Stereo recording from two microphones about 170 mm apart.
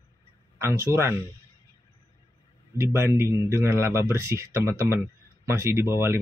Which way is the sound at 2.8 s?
15° right (ahead or behind).